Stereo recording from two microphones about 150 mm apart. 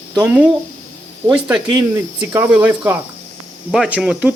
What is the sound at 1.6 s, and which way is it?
Speech, 20° right (ahead or behind).